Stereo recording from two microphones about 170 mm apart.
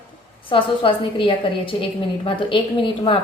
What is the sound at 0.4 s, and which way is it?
A woman's voice, 30° left (ahead or behind).